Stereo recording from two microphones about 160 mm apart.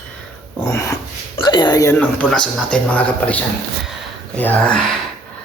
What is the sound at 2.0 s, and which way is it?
A man's voice, 10° left (ahead or behind).